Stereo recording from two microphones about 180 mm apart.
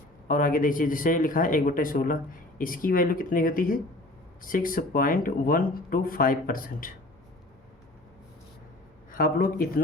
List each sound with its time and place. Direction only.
0.3 s speech: 50° left (ahead or behind)
9.1 s a man's voice: 55° left (ahead or behind)